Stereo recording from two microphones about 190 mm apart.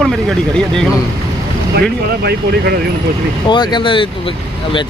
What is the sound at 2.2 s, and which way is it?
Speech, 55° right (ahead or behind).